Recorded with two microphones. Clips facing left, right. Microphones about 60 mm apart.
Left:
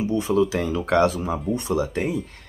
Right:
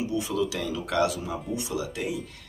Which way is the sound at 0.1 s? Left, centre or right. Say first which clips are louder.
Left 7 dB; left.